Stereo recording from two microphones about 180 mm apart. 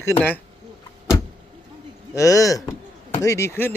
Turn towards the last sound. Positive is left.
turn(degrees=15)  # may be behind; listen again after turning